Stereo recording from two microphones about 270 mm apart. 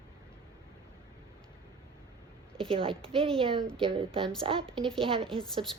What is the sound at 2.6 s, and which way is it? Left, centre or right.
A woman's voice, centre.